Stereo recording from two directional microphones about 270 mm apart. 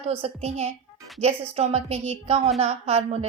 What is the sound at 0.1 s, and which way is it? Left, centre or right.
A woman's voice, right.